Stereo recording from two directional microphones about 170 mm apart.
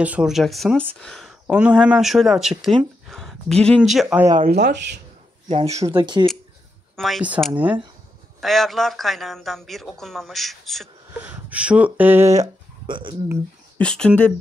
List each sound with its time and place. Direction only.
0.0 s speech: 5° right (ahead or behind)
4.6 s speech: 90° right
5.5 s speech: 40° right (ahead or behind)
5.8 s speech: 25° right (ahead or behind)
7.0 s speech: centre (ahead or behind)
11.1 s speech: 10° right (ahead or behind); by 13.1 s 25° right (ahead or behind)
13.7 s speech: 5° left (ahead or behind)